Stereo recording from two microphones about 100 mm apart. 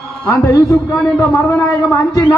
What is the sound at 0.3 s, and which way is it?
A man's voice, 35° left (ahead or behind).